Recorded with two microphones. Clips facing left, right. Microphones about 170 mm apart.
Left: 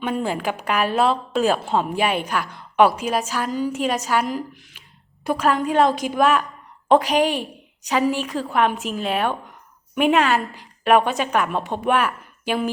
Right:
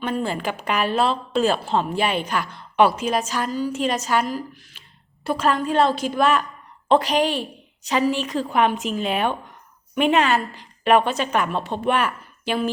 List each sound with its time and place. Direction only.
0.0 s a woman's voice: 15° left (ahead or behind)
3.5 s a woman's voice: 15° left (ahead or behind)
4.3 s a woman's voice: 20° left (ahead or behind)
11.9 s a sound: 5° left (ahead or behind)